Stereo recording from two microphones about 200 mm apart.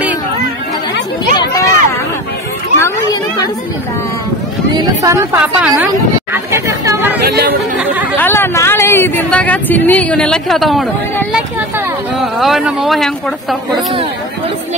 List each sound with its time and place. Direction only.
1.3 s a sound: 15° left (ahead or behind)
5.0 s a woman's voice: 15° right (ahead or behind)
7.2 s speech: 50° right (ahead or behind)
8.2 s speech: 10° left (ahead or behind)